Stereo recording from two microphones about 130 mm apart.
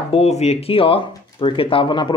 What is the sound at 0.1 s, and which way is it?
Speech, 55° left (ahead or behind).